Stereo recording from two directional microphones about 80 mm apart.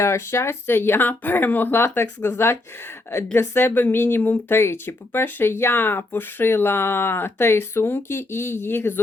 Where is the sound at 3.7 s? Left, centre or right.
Left.